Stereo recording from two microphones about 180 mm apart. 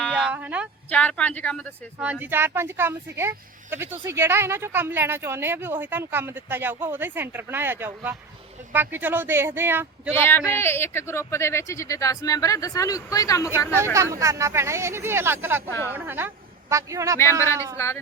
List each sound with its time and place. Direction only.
0.1 s speech: 5° right (ahead or behind)
0.9 s speech: 5° left (ahead or behind)
2.0 s speech: 10° right (ahead or behind)
10.1 s speech: 15° left (ahead or behind)
13.7 s speech: 15° right (ahead or behind)
17.7 s speech: 15° left (ahead or behind)